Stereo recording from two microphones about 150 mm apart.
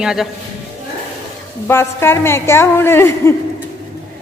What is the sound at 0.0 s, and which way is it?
Speech, 5° right (ahead or behind).